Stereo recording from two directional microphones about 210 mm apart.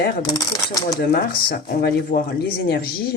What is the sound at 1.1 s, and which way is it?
Speech, 50° left (ahead or behind).